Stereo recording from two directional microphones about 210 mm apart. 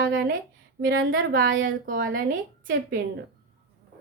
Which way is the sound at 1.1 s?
45° right (ahead or behind).